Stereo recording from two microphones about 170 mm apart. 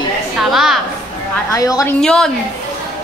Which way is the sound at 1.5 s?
20° left (ahead or behind).